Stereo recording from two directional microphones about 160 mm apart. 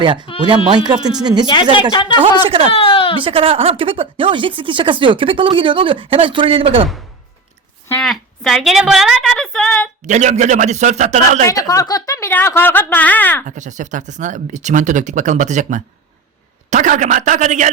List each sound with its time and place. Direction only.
0.0 s speech: 30° right (ahead or behind)
0.9 s speech: 5° right (ahead or behind)
1.2 s speech: 25° right (ahead or behind)
1.7 s speech: 30° left (ahead or behind)
3.2 s speech: 35° right (ahead or behind)
7.9 s a sound: 5° left (ahead or behind)
10.1 s speech: 45° right (ahead or behind)
11.4 s speech: 20° left (ahead or behind)
13.6 s speech: 50° right (ahead or behind)